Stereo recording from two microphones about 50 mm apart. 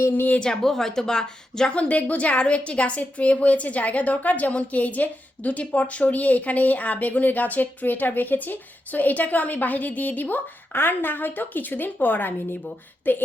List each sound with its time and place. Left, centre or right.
0.1 s a woman's voice: left
0.3 s speech: centre
1.7 s a woman's voice: left